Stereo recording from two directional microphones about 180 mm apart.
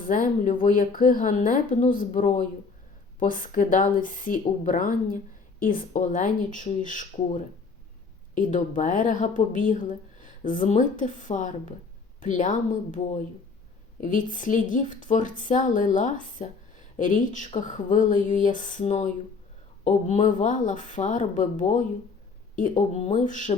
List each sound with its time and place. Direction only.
0.1 s a woman's voice: 45° left (ahead or behind)
8.4 s a woman's voice: 45° left (ahead or behind)